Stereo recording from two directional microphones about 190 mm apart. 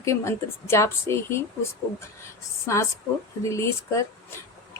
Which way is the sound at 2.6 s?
15° left (ahead or behind).